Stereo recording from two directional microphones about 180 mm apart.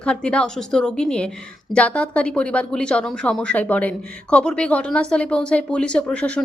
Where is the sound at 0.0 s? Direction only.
5° left (ahead or behind).